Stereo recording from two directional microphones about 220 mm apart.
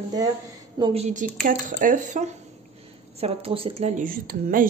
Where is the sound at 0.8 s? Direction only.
25° right (ahead or behind).